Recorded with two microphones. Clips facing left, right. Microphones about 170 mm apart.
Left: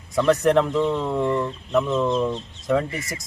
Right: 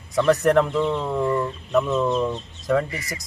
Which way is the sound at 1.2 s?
25° left (ahead or behind).